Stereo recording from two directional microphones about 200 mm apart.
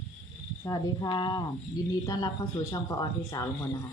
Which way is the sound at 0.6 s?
20° left (ahead or behind).